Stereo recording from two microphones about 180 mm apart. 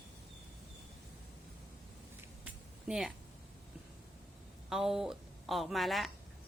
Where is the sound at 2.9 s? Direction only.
Centre (ahead or behind).